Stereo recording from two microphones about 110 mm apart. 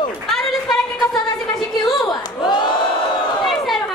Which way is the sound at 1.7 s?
40° left (ahead or behind).